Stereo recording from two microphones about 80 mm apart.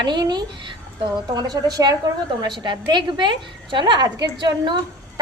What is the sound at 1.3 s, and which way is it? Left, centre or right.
Speech, right.